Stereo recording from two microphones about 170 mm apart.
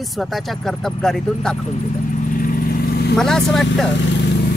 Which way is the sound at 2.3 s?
55° left (ahead or behind).